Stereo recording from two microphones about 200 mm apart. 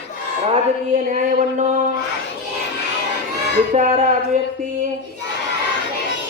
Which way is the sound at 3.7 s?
35° right (ahead or behind).